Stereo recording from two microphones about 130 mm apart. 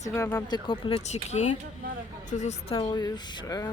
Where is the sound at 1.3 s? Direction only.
65° left (ahead or behind).